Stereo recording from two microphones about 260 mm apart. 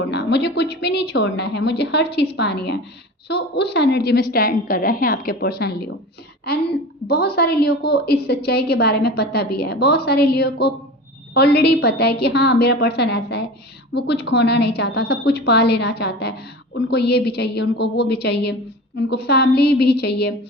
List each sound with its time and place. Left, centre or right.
0.1 s a woman's voice: left